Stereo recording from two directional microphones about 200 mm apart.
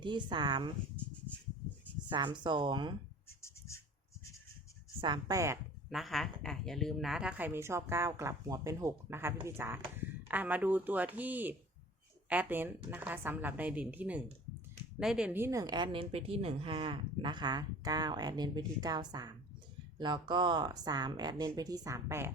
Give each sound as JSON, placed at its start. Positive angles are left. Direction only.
{"t": 0.0, "sound": "a woman's voice", "side_deg": -25}
{"t": 2.0, "sound": "a woman's voice", "side_deg": -25}
{"t": 4.9, "sound": "a woman's voice", "side_deg": -25}
{"t": 5.9, "sound": "a woman's voice", "side_deg": 0}